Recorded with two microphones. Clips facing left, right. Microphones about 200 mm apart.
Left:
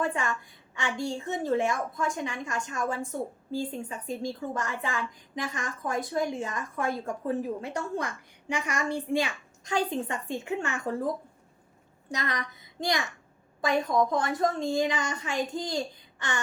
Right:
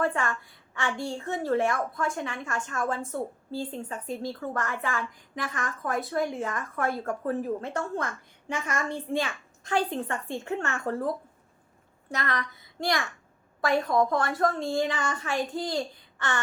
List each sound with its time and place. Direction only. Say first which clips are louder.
0.0 s a woman's voice: right 2 dB; 20° left (ahead or behind)
4.1 s a woman's voice: even; 15° left (ahead or behind)
12.1 s a child's voice: right 1 dB; 15° left (ahead or behind)